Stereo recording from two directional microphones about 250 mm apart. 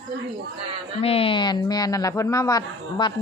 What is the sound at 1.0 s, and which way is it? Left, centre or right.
Speech, left.